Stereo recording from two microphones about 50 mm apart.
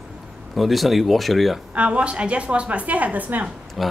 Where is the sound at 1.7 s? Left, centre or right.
Right.